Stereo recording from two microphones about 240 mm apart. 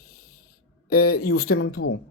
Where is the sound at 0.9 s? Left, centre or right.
Left.